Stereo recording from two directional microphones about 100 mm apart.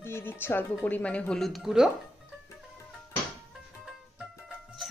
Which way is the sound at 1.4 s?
Centre (ahead or behind).